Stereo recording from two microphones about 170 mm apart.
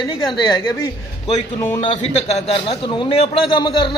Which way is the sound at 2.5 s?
30° left (ahead or behind).